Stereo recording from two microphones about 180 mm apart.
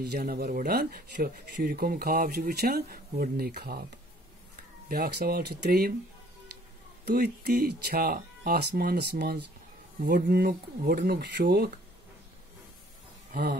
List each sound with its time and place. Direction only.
0.0 s speech: 60° right (ahead or behind)
4.8 s speech: 55° right (ahead or behind)
7.1 s speech: 60° right (ahead or behind)
13.3 s speech: 50° right (ahead or behind)